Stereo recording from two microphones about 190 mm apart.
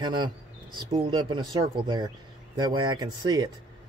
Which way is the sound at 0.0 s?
25° right (ahead or behind).